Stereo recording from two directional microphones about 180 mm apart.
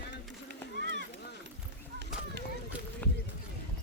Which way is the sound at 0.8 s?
70° right (ahead or behind).